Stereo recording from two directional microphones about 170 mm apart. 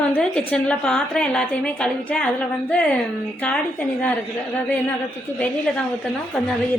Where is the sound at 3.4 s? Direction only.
10° left (ahead or behind).